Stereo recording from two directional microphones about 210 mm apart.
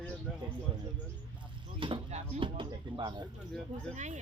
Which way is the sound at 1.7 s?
25° right (ahead or behind).